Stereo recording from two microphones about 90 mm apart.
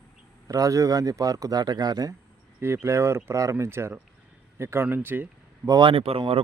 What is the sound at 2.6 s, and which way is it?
Speech, 30° right (ahead or behind).